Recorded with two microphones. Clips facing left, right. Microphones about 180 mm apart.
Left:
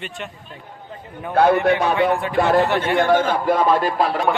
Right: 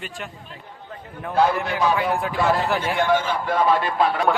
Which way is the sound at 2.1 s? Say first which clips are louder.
Left 4 dB; centre (ahead or behind).